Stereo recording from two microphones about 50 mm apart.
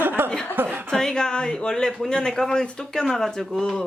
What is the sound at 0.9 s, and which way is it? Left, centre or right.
Speech, centre.